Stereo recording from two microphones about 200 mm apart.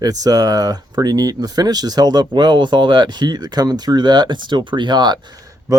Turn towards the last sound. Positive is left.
turn(degrees=-20)  # may be behind; listen again after turning